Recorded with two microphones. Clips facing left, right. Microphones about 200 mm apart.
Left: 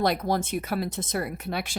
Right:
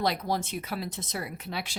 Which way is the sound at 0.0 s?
50° left (ahead or behind).